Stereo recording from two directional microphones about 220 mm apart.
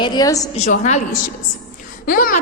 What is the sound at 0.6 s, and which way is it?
A woman's voice, 30° left (ahead or behind).